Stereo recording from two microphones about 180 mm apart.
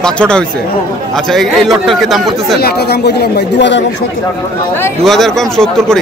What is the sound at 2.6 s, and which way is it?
Speech, 65° left (ahead or behind).